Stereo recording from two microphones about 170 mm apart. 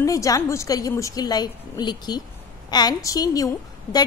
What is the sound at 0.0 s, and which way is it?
A woman's voice, 20° left (ahead or behind).